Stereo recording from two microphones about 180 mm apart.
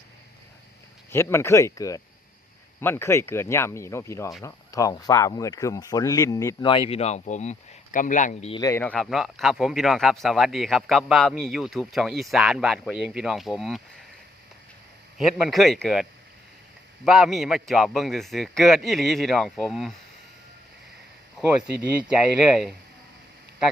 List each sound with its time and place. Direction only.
1.1 s speech: 15° left (ahead or behind); by 8.5 s 40° left (ahead or behind)
8.5 s speech: 20° left (ahead or behind)
8.8 s speech: 5° left (ahead or behind)
15.2 s speech: centre (ahead or behind)
17.1 s speech: centre (ahead or behind)
21.3 s speech: 5° right (ahead or behind)